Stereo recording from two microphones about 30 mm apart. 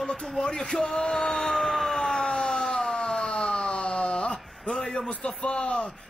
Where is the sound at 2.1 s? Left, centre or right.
Left.